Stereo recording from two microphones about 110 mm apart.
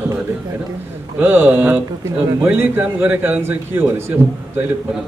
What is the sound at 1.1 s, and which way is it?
A man's voice, 20° right (ahead or behind).